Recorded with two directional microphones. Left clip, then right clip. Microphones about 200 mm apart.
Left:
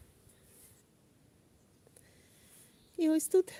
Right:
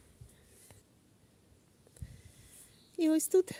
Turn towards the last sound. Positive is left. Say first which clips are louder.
# even
turn(degrees=5)  # may be behind; listen again after turning